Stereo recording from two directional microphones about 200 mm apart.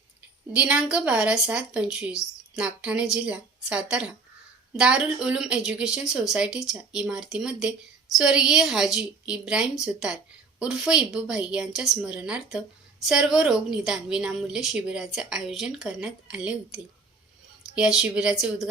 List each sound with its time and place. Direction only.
0.5 s a woman's voice: 5° right (ahead or behind)